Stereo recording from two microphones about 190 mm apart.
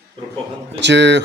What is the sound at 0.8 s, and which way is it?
Speech, 65° right (ahead or behind).